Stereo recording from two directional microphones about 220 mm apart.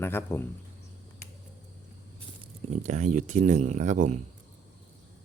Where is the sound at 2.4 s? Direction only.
30° right (ahead or behind).